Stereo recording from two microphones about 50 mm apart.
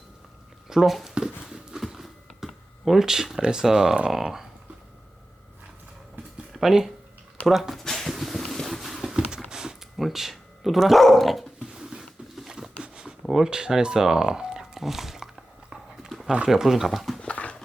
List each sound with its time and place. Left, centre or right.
0.7 s speech: centre
1.1 s dog: centre
1.8 s a sound: centre
3.4 s speech: centre
4.1 s speech: centre
6.5 s speech: centre
7.4 s a sound: centre
9.5 s typing: centre
10.0 s speech: centre
11.7 s a sound: centre
13.2 s speech: centre
15.7 s horse: centre
16.5 s speech: centre
17.2 s clip-clop: left